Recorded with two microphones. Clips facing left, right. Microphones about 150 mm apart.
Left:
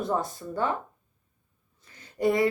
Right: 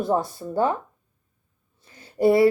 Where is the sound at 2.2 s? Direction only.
35° right (ahead or behind).